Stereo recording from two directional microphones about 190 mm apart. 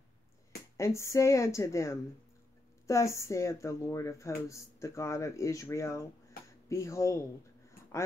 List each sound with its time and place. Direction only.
0.7 s speech: 15° left (ahead or behind)